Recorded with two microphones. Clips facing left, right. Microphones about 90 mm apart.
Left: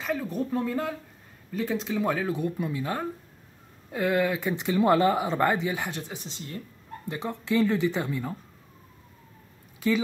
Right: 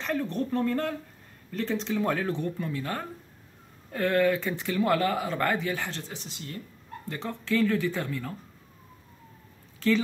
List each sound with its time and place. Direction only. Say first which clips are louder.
0.0 s speech: even; 5° left (ahead or behind)
6.2 s speech: left 1 dB; 25° left (ahead or behind)
9.8 s speech: even; 15° left (ahead or behind)